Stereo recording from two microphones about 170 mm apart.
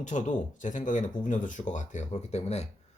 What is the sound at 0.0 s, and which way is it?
Speech, 45° left (ahead or behind).